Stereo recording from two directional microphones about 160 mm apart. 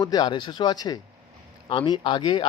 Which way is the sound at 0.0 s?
25° left (ahead or behind).